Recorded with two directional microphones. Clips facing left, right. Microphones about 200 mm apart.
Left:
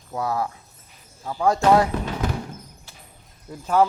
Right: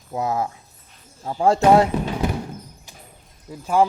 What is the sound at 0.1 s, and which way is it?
Speech, 20° right (ahead or behind).